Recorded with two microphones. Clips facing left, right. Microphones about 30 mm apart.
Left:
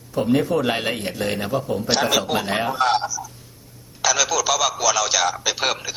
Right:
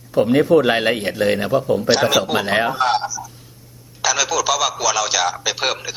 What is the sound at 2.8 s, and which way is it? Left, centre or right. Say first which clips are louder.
A man's voice: right 1 dB; centre.